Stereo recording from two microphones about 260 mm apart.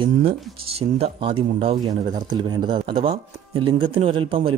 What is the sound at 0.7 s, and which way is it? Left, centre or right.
Speech, right.